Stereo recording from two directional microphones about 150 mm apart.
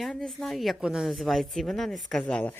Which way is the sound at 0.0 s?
5° left (ahead or behind).